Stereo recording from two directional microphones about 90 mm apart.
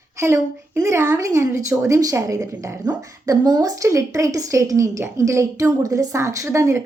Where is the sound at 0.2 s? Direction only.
30° right (ahead or behind).